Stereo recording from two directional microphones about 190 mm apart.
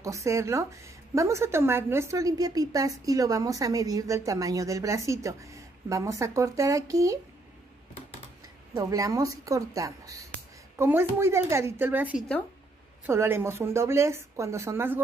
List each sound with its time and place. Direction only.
0.0 s a woman's voice: 15° right (ahead or behind)
8.7 s a woman's voice: 20° right (ahead or behind)